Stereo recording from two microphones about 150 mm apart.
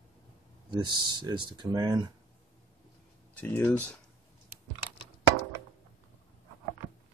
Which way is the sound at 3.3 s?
10° left (ahead or behind).